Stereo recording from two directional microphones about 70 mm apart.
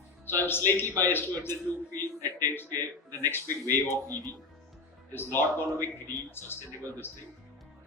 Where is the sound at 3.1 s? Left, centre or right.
Left.